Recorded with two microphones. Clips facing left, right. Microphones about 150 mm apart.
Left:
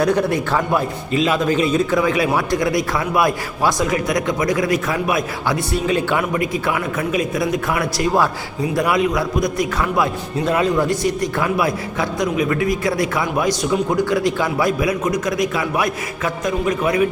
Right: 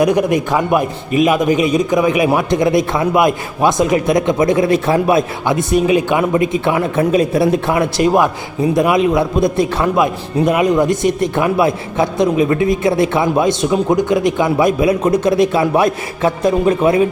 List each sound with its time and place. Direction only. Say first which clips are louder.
0.0 s a man's voice: right 4 dB; 15° right (ahead or behind)